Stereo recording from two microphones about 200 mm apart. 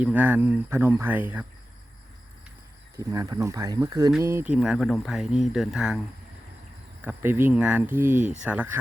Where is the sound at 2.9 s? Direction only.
15° right (ahead or behind).